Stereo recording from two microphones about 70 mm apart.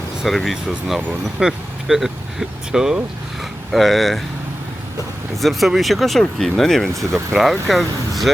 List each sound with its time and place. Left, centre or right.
0.3 s speech: centre
5.3 s speech: centre
6.9 s speech: right
7.3 s speech: centre